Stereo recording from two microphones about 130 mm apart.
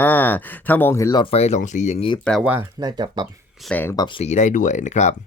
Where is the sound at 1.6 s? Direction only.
65° left (ahead or behind); by 2.2 s 50° left (ahead or behind).